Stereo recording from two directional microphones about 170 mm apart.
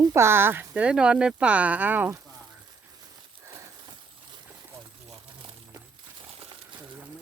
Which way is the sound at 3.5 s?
15° right (ahead or behind).